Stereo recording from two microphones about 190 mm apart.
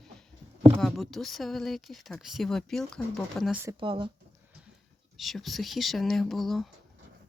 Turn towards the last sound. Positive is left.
turn(degrees=0)  # may be behind; listen again after turning